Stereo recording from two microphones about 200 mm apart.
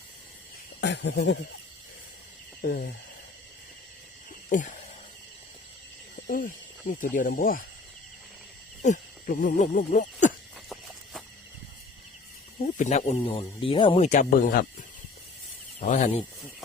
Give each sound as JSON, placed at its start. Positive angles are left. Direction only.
{"t": 0.8, "sound": "speech", "side_deg": 60}
{"t": 2.6, "sound": "speech", "side_deg": 45}
{"t": 4.4, "sound": "speech", "side_deg": 40}
{"t": 6.1, "sound": "speech", "side_deg": 45}
{"t": 8.8, "sound": "speech", "side_deg": 40}
{"t": 12.6, "sound": "speech", "side_deg": 35}
{"t": 15.8, "sound": "speech", "side_deg": 35}